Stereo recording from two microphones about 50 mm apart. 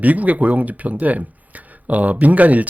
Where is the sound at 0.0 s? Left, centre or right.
Right.